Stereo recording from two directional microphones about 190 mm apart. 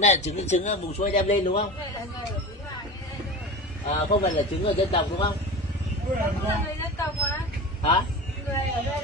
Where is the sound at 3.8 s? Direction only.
40° left (ahead or behind).